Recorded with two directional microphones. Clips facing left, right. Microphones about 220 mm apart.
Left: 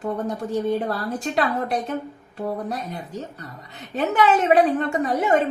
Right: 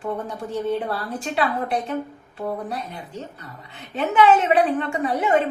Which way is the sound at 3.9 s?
40° left (ahead or behind).